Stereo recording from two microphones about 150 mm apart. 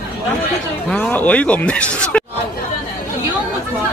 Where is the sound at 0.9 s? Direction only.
10° left (ahead or behind).